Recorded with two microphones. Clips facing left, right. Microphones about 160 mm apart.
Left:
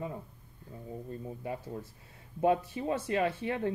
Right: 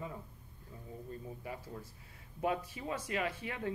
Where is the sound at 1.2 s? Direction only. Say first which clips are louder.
Left 6 dB; 30° left (ahead or behind).